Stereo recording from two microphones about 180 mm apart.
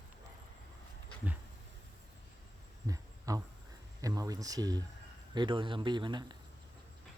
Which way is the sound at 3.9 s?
20° right (ahead or behind).